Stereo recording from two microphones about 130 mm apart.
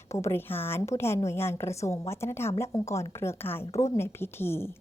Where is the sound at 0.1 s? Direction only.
20° left (ahead or behind).